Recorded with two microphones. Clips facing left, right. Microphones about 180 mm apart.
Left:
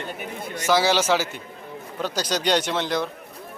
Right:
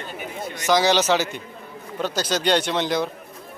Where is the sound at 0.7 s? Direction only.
5° left (ahead or behind).